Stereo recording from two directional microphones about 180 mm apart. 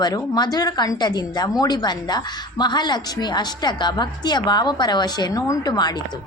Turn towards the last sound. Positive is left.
turn(degrees=25)  # may be behind; listen again after turning